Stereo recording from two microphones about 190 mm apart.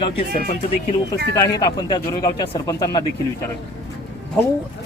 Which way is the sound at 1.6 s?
20° left (ahead or behind).